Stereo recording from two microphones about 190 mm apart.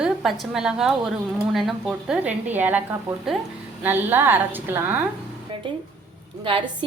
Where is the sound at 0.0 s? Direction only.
Centre (ahead or behind).